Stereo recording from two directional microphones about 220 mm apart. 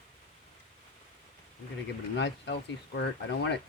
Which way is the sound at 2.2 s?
55° left (ahead or behind).